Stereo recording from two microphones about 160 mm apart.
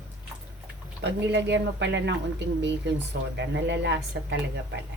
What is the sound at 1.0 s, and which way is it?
Speech, 90° right.